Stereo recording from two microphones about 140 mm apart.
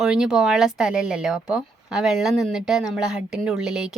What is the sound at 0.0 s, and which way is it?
A woman's voice, 5° right (ahead or behind).